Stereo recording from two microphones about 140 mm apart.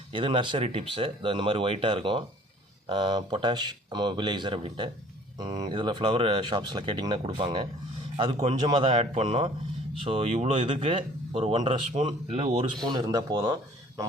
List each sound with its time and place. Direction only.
0.1 s speech: 35° right (ahead or behind)
12.8 s speech: 30° right (ahead or behind)